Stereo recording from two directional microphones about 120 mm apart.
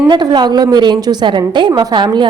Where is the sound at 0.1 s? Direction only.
40° right (ahead or behind).